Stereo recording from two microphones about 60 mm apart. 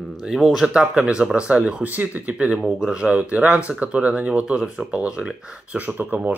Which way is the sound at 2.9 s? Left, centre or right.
Right.